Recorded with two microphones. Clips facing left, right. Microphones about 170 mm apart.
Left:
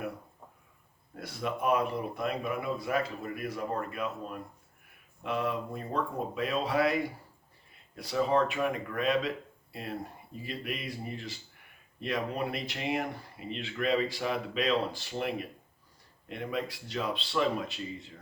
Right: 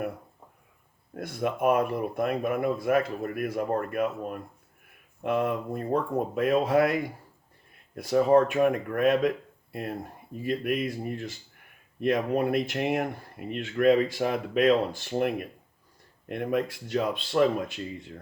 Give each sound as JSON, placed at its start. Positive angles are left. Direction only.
{"t": 1.1, "sound": "speech", "side_deg": -50}
{"t": 10.4, "sound": "speech", "side_deg": -55}